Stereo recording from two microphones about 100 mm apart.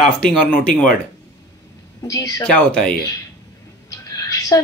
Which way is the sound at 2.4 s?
10° left (ahead or behind).